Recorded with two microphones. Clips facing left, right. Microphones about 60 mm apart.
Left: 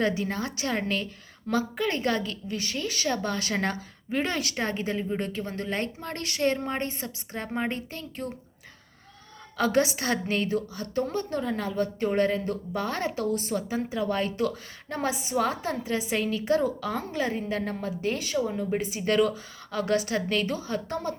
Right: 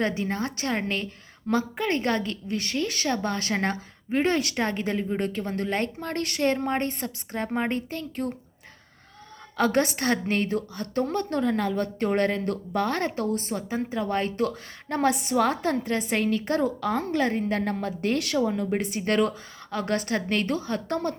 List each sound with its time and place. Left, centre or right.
0.0 s a woman's voice: right
9.6 s a woman's voice: right